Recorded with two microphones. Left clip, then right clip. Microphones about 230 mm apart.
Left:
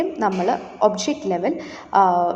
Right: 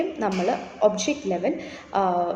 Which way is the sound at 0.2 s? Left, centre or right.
Centre.